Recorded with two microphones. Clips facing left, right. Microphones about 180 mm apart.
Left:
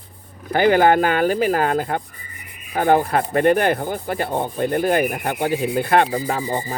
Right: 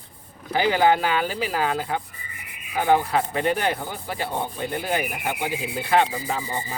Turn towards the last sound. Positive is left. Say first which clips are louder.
# left 5 dB
turn(degrees=50)  # may be behind; listen again after turning